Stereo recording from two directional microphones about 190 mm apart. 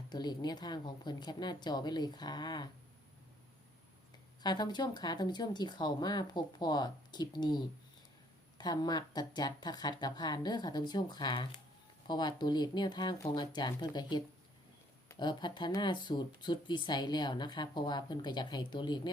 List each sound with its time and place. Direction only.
0.1 s speech: 20° left (ahead or behind)
4.4 s speech: 20° left (ahead or behind)